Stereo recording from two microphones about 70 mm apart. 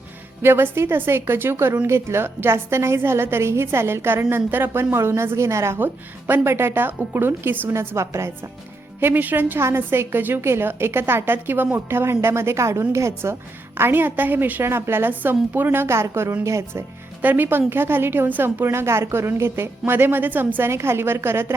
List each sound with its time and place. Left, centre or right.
0.4 s a woman's voice: right
5.7 s a woman's voice: right
7.7 s a woman's voice: right
9.0 s a woman's voice: right
13.7 s a woman's voice: right
17.2 s a woman's voice: right